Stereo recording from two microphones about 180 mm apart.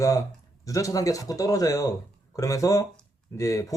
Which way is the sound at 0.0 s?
20° left (ahead or behind).